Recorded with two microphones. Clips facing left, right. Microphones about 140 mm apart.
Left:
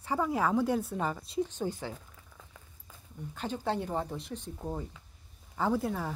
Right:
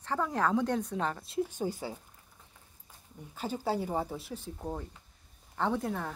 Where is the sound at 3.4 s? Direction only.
5° right (ahead or behind).